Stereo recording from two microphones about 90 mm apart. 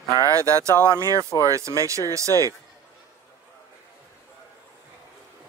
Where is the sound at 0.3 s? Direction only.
35° right (ahead or behind).